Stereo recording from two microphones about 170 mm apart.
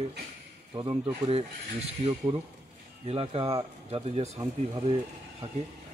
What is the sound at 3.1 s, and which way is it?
A man's voice, 35° right (ahead or behind).